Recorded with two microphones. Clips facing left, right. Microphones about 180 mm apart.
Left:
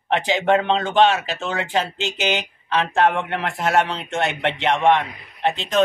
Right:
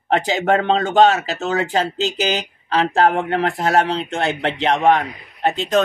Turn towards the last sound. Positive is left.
turn(degrees=-40)  # may be behind; listen again after turning